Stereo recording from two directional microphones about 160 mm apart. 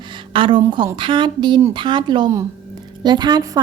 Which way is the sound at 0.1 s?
30° right (ahead or behind).